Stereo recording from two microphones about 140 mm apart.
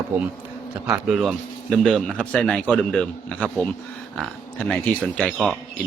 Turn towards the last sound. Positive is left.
turn(degrees=5)  # may be behind; listen again after turning